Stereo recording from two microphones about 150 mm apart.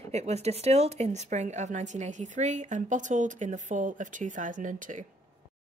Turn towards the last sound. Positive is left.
turn(degrees=-60)  # may be behind; listen again after turning